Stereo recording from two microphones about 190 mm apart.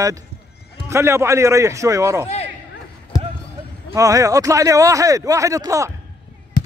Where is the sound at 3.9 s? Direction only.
15° right (ahead or behind).